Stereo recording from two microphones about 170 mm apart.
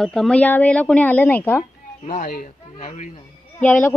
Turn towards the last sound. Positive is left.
turn(degrees=10)  # may be behind; listen again after turning